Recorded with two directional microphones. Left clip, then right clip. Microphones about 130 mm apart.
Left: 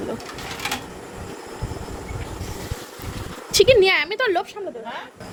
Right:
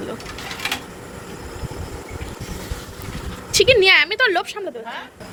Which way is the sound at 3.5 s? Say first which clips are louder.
Even; 35° left (ahead or behind).